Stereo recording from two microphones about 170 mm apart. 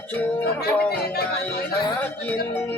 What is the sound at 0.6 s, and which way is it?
Speech, 65° left (ahead or behind).